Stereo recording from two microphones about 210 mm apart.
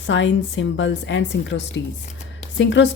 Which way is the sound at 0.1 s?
60° left (ahead or behind).